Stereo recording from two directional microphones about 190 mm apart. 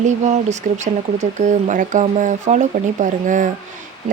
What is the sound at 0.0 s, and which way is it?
Speech, 40° right (ahead or behind).